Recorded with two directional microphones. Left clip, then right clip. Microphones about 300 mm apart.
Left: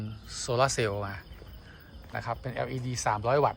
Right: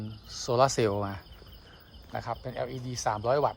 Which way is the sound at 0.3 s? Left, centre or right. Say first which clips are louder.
Right 2 dB; centre.